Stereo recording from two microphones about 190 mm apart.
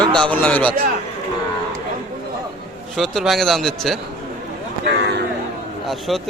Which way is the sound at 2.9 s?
Centre (ahead or behind).